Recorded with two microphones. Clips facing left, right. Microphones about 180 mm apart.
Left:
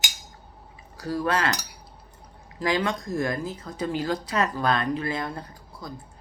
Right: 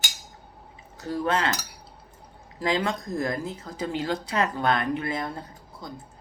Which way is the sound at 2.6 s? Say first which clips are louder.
Left 1 dB; 25° right (ahead or behind).